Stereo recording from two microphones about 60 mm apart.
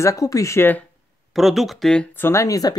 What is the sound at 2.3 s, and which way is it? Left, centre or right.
Speech, left.